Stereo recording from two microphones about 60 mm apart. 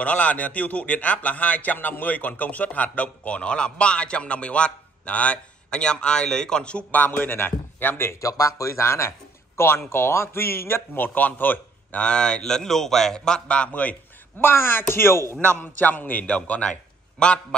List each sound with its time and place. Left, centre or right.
0.0 s a man's voice: left
8.2 s a man's voice: left
12.0 s a man's voice: centre
14.4 s a man's voice: left
15.6 s a man's voice: left; by 17.6 s centre